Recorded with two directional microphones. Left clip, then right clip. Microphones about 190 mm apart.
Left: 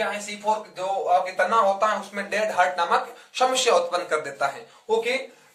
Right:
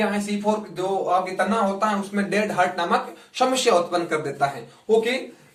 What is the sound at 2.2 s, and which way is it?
Speech, 20° left (ahead or behind).